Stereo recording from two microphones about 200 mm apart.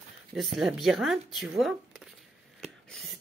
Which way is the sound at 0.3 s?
Centre (ahead or behind).